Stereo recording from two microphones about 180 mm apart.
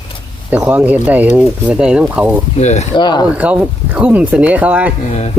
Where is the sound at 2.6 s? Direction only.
40° left (ahead or behind).